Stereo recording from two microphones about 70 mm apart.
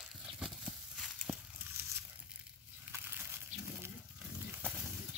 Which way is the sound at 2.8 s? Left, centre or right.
Right.